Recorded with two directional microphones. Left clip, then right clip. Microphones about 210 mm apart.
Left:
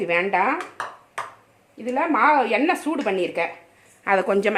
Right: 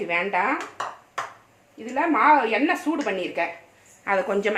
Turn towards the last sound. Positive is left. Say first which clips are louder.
# left 3 dB
turn(degrees=45)  # may be behind; listen again after turning